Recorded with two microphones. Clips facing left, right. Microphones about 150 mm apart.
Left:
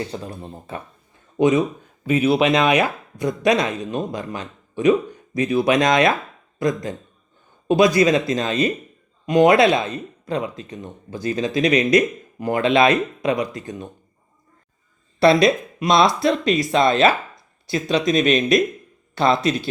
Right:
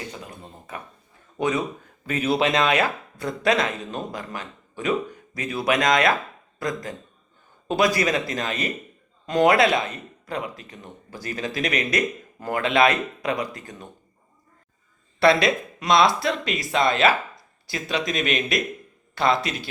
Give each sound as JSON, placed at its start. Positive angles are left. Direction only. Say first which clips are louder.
{"t": 0.1, "sound": "speech", "louder": "left 7 dB", "side_deg": 30}
{"t": 1.4, "sound": "speech", "louder": "left 7 dB", "side_deg": 20}
{"t": 15.2, "sound": "speech", "louder": "left 4 dB", "side_deg": 25}